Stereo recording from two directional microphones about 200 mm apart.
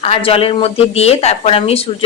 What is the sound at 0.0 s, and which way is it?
Speech, 30° left (ahead or behind).